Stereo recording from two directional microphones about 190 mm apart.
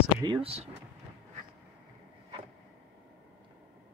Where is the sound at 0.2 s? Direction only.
25° right (ahead or behind).